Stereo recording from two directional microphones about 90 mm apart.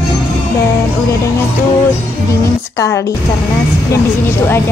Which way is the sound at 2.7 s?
35° left (ahead or behind).